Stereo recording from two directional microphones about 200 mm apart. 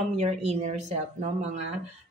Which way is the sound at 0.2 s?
35° right (ahead or behind).